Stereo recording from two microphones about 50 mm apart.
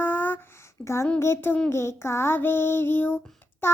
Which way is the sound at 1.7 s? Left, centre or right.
Left.